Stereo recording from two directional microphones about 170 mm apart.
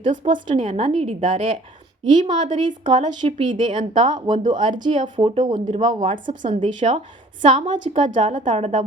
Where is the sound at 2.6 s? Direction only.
25° right (ahead or behind).